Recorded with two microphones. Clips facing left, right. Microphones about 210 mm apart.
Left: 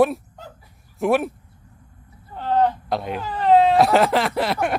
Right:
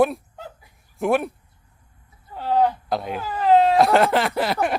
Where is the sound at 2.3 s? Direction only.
10° right (ahead or behind).